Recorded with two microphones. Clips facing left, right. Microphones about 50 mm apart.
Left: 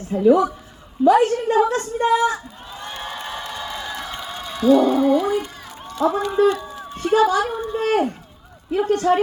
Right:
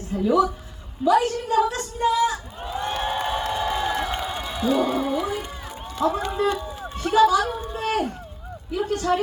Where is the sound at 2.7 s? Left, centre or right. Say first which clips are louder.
Right 6 dB; centre.